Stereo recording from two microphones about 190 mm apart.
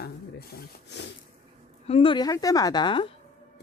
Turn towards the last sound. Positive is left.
turn(degrees=25)  # may be behind; listen again after turning